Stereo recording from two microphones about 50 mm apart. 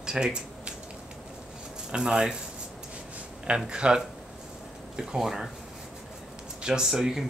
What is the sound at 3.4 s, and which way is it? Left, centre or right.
Speech, centre.